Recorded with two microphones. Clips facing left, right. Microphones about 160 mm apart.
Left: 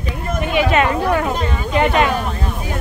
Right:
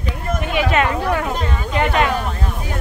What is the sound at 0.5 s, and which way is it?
Speech, 20° left (ahead or behind).